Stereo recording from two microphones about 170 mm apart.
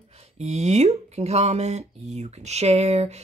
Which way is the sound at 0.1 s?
40° right (ahead or behind).